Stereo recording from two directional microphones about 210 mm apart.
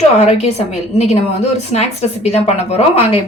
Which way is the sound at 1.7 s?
30° left (ahead or behind).